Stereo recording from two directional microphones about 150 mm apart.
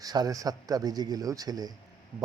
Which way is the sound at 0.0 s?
25° right (ahead or behind).